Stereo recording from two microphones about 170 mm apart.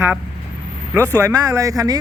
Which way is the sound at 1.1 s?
20° right (ahead or behind).